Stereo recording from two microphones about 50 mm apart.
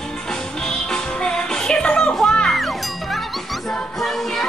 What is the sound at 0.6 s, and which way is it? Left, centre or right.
Music, centre.